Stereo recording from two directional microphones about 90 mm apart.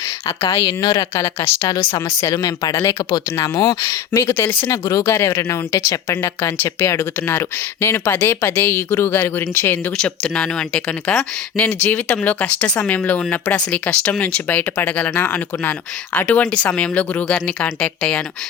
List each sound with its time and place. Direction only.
0.3 s speech: 35° left (ahead or behind)
0.7 s speech: 60° left (ahead or behind)
0.9 s speech: 30° left (ahead or behind)
3.1 s speech: 35° left (ahead or behind)
4.7 s speech: 40° left (ahead or behind)
6.1 s speech: 25° left (ahead or behind)
10.0 s speech: 10° left (ahead or behind)
11.8 s speech: 20° left (ahead or behind)